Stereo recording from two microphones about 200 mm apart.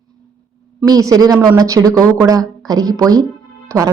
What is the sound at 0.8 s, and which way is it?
A woman's voice, 15° right (ahead or behind).